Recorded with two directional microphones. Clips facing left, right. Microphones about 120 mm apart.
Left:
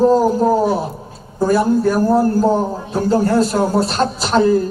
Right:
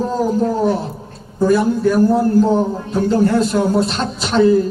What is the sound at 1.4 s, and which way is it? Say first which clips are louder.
A man's voice: even; 35° left (ahead or behind).